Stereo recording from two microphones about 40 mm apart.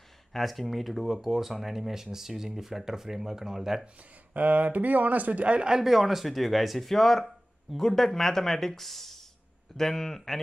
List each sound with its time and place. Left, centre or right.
0.3 s speech: centre
4.3 s speech: right
5.7 s speech: centre